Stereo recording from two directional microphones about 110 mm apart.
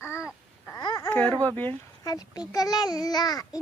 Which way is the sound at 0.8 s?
40° left (ahead or behind).